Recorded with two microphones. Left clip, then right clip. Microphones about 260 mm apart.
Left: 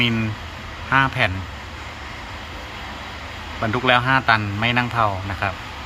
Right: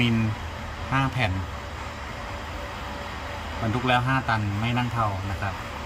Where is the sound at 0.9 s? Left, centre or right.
Centre.